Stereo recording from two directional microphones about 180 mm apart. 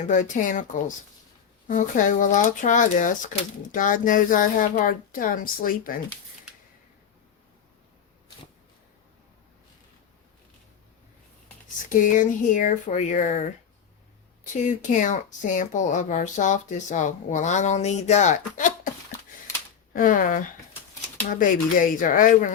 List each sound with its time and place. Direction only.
0.1 s speech: 45° left (ahead or behind)
11.9 s speech: 45° left (ahead or behind)
19.9 s speech: 50° left (ahead or behind)